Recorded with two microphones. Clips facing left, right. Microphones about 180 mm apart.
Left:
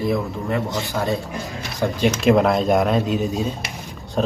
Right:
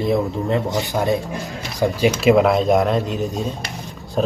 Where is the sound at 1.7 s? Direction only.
5° right (ahead or behind).